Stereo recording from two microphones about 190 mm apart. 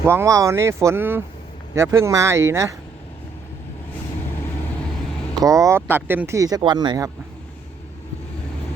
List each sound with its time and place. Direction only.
0.0 s speech: 15° right (ahead or behind)
5.3 s speech: 15° right (ahead or behind)